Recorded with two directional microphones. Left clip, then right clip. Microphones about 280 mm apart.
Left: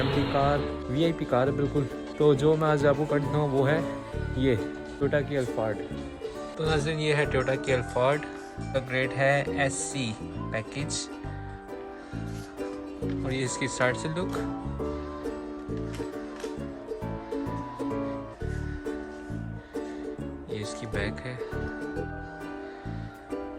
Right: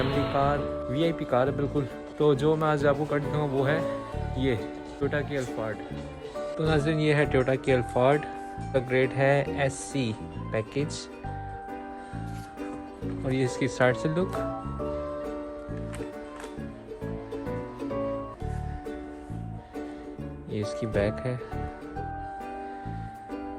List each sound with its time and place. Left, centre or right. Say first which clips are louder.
0.0 s speech: even; centre
13.2 s speech: right 5 dB; centre
20.5 s speech: right 5 dB; centre